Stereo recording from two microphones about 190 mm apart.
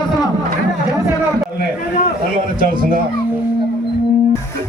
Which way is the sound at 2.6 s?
45° right (ahead or behind).